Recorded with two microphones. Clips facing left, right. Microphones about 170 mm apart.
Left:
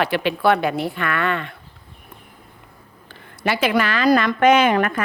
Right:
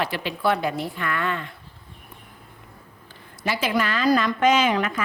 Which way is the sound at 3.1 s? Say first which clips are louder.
Left 5 dB; 65° left (ahead or behind).